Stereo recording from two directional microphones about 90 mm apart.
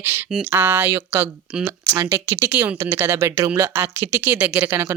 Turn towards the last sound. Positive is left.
turn(degrees=-20)  # may be behind; listen again after turning